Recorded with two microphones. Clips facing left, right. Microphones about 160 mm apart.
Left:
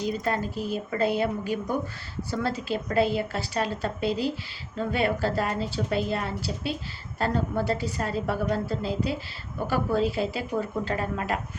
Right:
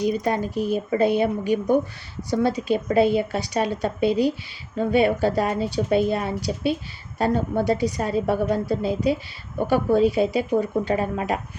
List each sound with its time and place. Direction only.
0.0 s a woman's voice: 15° right (ahead or behind)